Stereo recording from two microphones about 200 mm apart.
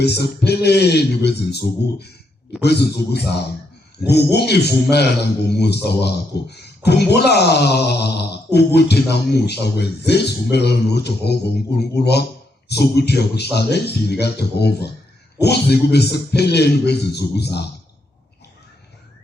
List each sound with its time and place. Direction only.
0.0 s a man's voice: 55° left (ahead or behind)